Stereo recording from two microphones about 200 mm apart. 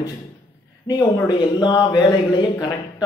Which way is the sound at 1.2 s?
20° left (ahead or behind).